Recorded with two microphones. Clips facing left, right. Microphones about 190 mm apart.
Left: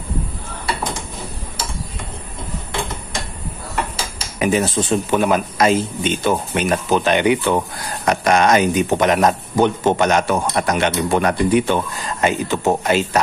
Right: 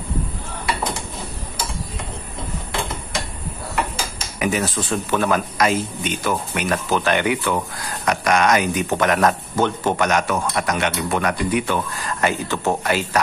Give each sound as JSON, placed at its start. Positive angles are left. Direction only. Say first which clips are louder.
{"t": 4.4, "sound": "speech", "louder": "left 4 dB", "side_deg": 25}